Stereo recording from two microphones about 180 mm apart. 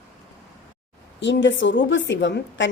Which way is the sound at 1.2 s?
80° left.